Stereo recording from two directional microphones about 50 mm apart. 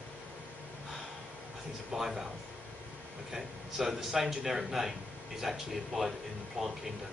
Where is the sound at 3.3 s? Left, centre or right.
Centre.